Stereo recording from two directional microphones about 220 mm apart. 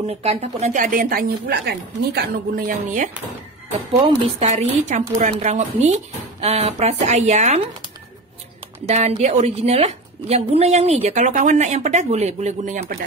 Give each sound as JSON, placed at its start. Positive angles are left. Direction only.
{"t": 0.0, "sound": "speech", "side_deg": -25}
{"t": 8.8, "sound": "a woman's voice", "side_deg": -30}